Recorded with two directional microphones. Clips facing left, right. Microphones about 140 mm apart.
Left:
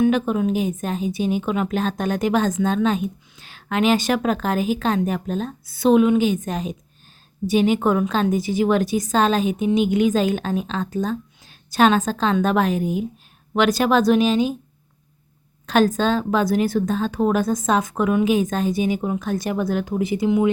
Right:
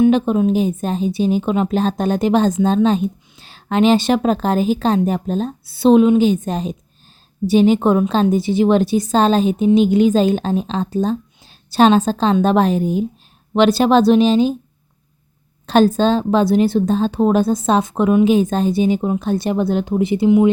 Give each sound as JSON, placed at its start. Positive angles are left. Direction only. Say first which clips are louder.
{"t": 0.0, "sound": "speech", "louder": "right 5 dB", "side_deg": -30}
{"t": 15.6, "sound": "speech", "louder": "right 5 dB", "side_deg": -30}